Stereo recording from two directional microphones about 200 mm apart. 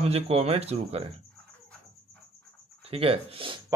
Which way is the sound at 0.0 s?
30° right (ahead or behind).